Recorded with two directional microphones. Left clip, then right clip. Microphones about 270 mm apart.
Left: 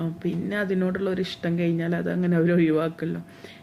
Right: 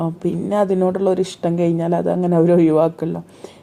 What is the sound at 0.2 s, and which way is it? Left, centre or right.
Speech, centre.